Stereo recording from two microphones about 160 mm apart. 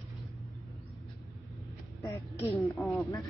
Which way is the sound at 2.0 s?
20° left (ahead or behind).